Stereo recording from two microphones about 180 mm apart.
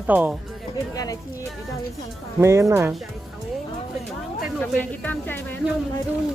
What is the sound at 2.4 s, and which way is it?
Speech, 15° right (ahead or behind).